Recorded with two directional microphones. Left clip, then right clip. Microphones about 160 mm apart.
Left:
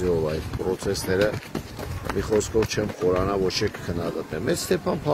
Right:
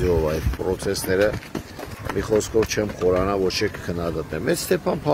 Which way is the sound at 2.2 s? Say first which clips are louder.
Right 2 dB; 10° right (ahead or behind).